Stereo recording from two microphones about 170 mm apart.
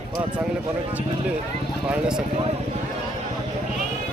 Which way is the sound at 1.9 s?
5° right (ahead or behind).